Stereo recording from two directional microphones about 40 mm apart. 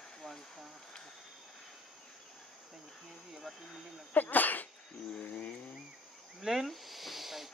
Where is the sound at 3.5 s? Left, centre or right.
Centre.